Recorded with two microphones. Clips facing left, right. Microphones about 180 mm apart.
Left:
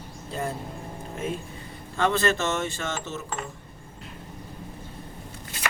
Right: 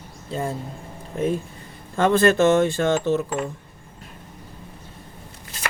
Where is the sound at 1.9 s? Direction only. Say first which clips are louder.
Right 7 dB; 50° right (ahead or behind).